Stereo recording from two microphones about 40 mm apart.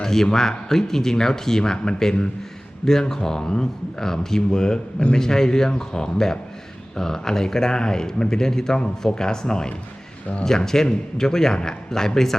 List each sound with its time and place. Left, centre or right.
0.0 s speech: centre
10.8 s speech: centre